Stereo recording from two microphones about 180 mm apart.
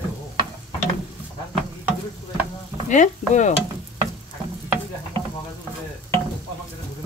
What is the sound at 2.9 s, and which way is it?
Speech, 40° left (ahead or behind).